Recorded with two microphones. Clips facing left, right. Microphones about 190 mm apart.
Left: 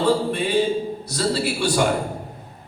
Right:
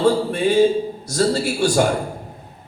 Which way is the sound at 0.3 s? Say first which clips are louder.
Right 5 dB; 45° right (ahead or behind).